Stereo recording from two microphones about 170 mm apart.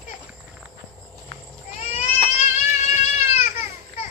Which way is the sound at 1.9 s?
40° left (ahead or behind).